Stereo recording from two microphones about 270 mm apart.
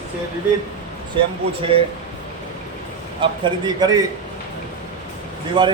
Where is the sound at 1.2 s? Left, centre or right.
Centre.